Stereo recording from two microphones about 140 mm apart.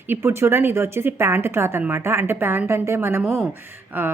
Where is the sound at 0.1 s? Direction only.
20° right (ahead or behind).